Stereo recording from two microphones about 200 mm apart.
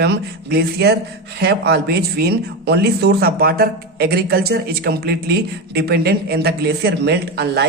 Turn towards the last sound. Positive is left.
turn(degrees=-55)  # may be behind; listen again after turning